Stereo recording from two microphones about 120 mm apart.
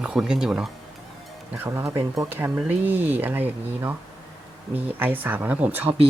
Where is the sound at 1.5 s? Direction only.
20° right (ahead or behind).